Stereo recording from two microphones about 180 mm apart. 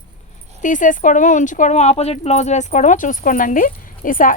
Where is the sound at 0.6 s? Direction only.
45° left (ahead or behind).